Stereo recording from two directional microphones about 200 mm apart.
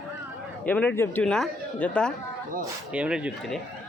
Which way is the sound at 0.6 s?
10° left (ahead or behind).